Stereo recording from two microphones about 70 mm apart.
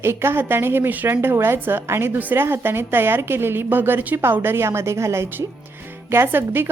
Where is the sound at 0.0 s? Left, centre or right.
Right.